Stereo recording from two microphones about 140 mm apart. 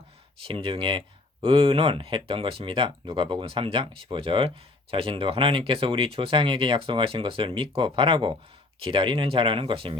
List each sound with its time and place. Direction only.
0.4 s speech: 40° right (ahead or behind)